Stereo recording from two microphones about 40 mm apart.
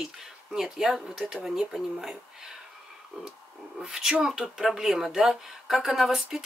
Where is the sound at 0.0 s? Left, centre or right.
Centre.